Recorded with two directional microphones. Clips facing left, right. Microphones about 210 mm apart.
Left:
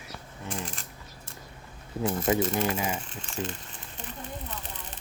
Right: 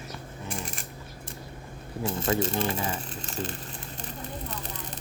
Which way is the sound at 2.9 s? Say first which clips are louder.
Even; 40° right (ahead or behind).